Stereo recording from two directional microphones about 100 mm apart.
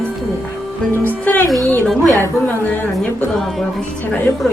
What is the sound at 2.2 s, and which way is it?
Speech, 20° left (ahead or behind).